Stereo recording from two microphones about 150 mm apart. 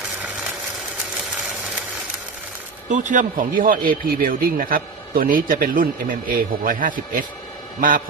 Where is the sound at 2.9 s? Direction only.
60° right (ahead or behind).